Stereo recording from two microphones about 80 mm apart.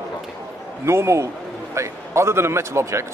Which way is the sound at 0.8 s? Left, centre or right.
Right.